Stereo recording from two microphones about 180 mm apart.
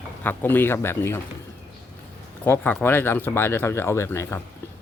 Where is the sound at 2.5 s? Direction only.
10° left (ahead or behind).